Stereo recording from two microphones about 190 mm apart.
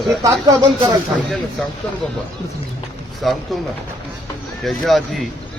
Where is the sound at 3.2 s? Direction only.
Centre (ahead or behind).